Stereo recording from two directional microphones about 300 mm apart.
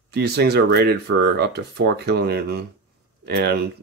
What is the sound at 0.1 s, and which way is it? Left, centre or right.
Speech, right.